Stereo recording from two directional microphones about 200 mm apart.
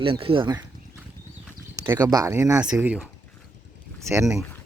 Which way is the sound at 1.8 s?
20° right (ahead or behind).